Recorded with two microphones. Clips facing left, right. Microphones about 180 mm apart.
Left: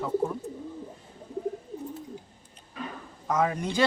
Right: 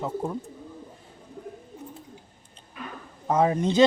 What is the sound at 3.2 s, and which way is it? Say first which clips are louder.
Speech: right 5 dB; 30° right (ahead or behind).